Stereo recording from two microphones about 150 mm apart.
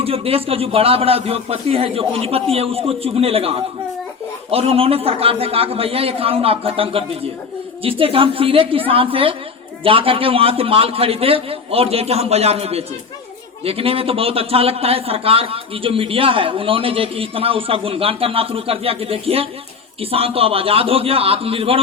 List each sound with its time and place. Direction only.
0.0 s a man's voice: 40° right (ahead or behind)